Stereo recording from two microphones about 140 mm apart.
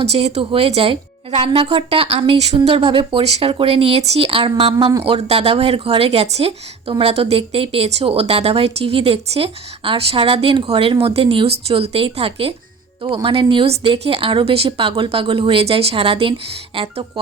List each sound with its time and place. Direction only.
0.0 s speech: 50° right (ahead or behind)